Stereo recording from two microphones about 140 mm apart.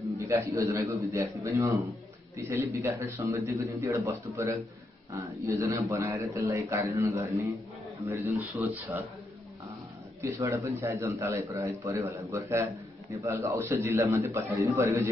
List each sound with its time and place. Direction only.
0.2 s a man's voice: 20° right (ahead or behind)
10.2 s a man's voice: 20° right (ahead or behind)